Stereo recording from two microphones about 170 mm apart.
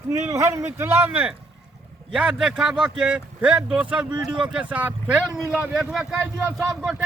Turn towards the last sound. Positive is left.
turn(degrees=-5)  # may be behind; listen again after turning